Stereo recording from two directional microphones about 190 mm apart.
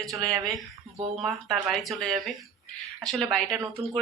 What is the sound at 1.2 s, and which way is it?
Speech, centre (ahead or behind).